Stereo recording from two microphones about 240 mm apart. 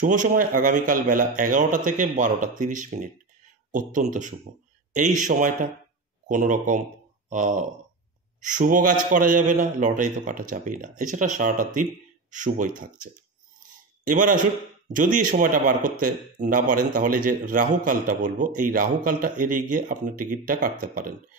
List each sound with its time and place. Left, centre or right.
0.0 s speech: right
14.0 s speech: right